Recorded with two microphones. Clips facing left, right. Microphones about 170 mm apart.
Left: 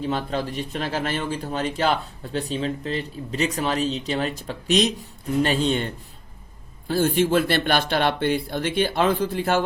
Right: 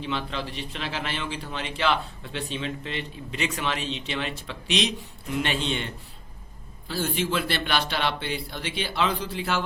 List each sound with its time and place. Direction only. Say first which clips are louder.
0.0 s a man's voice: left 5 dB; 45° left (ahead or behind)